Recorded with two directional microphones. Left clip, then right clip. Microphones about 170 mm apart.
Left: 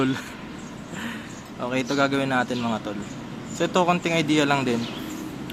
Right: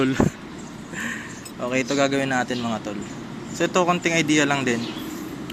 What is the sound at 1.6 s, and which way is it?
Speech, 5° left (ahead or behind).